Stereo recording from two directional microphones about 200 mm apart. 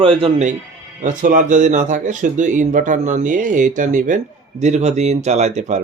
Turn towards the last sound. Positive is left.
turn(degrees=-35)  # may be behind; listen again after turning